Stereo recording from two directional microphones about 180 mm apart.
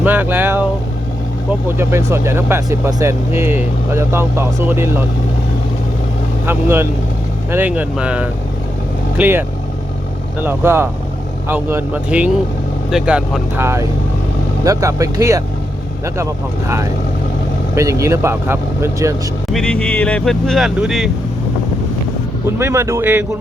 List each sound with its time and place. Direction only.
0.0 s vehicle: 10° right (ahead or behind)
1.6 s speech: 15° right (ahead or behind)
6.4 s speech: 10° right (ahead or behind)
10.4 s speech: 15° right (ahead or behind)
19.5 s speech: 5° left (ahead or behind)
22.4 s speech: 15° right (ahead or behind)